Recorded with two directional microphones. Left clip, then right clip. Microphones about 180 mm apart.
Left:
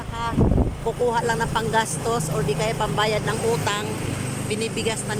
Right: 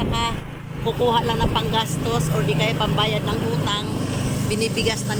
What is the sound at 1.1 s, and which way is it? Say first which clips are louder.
Speech: right 2 dB; 5° left (ahead or behind).